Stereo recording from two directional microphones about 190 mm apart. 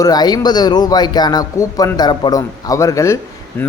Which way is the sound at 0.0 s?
20° left (ahead or behind).